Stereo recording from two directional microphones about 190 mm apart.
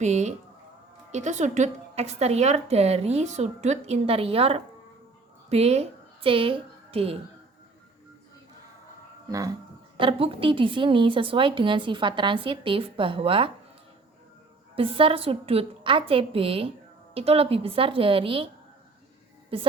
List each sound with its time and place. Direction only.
0.0 s a woman's voice: 35° right (ahead or behind)
9.3 s speech: 15° right (ahead or behind)
10.0 s a woman's voice: 30° right (ahead or behind)
14.8 s a woman's voice: 30° right (ahead or behind)
19.5 s a woman's voice: 30° right (ahead or behind)